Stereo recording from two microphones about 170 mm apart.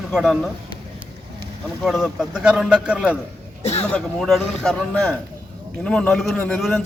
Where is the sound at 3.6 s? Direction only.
40° left (ahead or behind).